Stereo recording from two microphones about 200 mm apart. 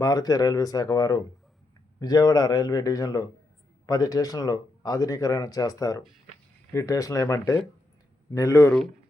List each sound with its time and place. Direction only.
0.0 s speech: 20° left (ahead or behind)